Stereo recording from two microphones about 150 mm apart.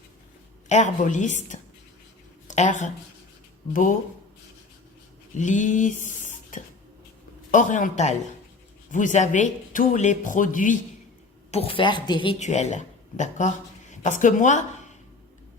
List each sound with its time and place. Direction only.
0.7 s speech: 50° left (ahead or behind)
2.5 s speech: 55° left (ahead or behind)
5.4 s a sound: 55° left (ahead or behind)
7.5 s speech: 60° left (ahead or behind)
11.5 s speech: 40° left (ahead or behind)
12.4 s speech: 50° left (ahead or behind)